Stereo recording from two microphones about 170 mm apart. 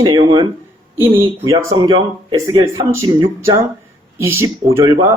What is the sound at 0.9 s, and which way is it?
Speech, 15° right (ahead or behind).